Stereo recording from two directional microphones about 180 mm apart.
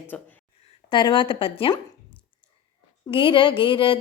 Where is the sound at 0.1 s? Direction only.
10° left (ahead or behind).